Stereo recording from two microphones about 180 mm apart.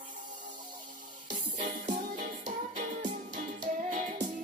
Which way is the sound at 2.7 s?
45° right (ahead or behind).